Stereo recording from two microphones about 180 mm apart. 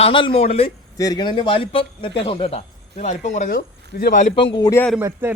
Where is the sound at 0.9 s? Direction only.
20° left (ahead or behind); by 4.3 s 45° left (ahead or behind).